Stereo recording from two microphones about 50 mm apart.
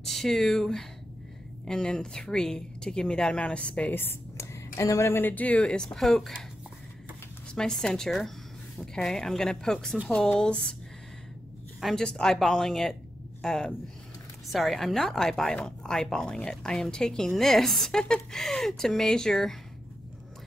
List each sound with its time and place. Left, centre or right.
0.0 s a woman's voice: centre; by 3.9 s left
3.9 s a woman's voice: left
5.1 s speech: left
5.9 s a woman's voice: centre
7.5 s a woman's voice: centre
11.9 s a woman's voice: centre
12.4 s a woman's voice: centre
14.5 s a woman's voice: centre